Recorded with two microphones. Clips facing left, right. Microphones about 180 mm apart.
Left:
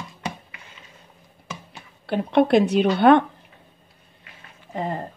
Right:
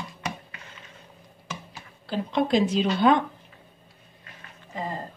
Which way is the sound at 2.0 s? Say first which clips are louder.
Left 6 dB; 65° left (ahead or behind).